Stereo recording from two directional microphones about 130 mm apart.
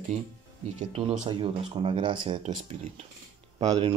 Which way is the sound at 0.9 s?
65° right (ahead or behind).